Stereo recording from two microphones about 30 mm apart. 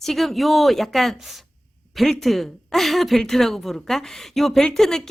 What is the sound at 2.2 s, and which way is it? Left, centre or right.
A woman's voice, centre.